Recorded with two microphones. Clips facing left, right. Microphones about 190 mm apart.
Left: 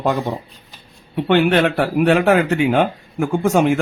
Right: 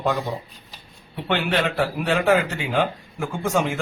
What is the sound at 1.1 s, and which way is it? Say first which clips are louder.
A man's voice: left 8 dB; 55° left (ahead or behind).